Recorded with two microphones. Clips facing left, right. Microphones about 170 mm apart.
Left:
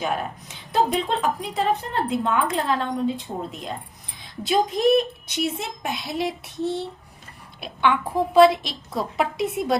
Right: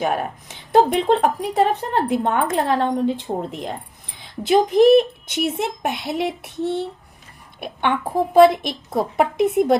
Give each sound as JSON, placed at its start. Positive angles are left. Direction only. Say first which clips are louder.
{"t": 0.0, "sound": "a woman's voice", "louder": "right 4 dB", "side_deg": -60}